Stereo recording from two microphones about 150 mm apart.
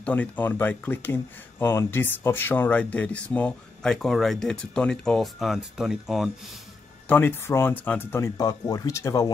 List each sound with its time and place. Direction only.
0.0 s speech: 10° left (ahead or behind)
7.1 s speech: 15° left (ahead or behind)